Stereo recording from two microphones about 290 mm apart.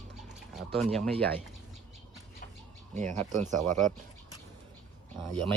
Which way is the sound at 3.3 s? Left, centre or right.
Right.